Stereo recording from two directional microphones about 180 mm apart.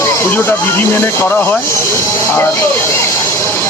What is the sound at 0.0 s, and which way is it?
Speech, 15° left (ahead or behind).